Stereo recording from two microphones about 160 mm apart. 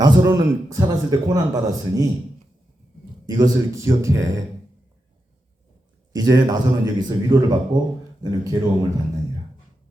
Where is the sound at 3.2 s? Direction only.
25° right (ahead or behind).